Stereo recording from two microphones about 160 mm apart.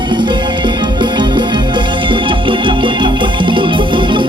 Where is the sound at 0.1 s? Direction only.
30° right (ahead or behind).